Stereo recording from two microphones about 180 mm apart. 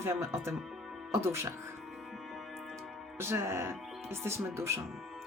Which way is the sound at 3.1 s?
15° right (ahead or behind).